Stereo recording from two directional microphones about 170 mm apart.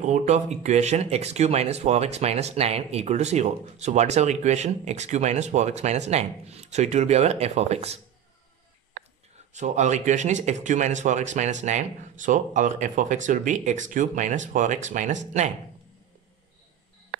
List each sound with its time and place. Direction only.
0.0 s speech: 45° right (ahead or behind)
9.5 s speech: 45° right (ahead or behind)